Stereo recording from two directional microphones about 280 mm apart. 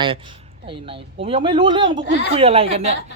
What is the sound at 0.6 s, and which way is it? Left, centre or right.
Speech, centre.